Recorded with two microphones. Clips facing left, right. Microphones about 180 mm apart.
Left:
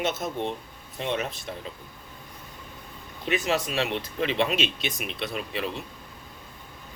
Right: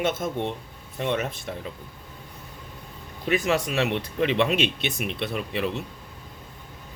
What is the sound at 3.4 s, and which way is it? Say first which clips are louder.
Speech: right 2 dB; 55° right (ahead or behind).